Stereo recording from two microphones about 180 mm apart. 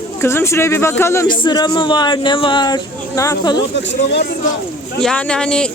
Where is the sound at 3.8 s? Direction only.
80° left.